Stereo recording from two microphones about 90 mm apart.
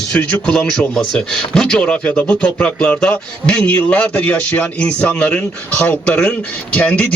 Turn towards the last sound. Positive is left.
turn(degrees=15)  # may be behind; listen again after turning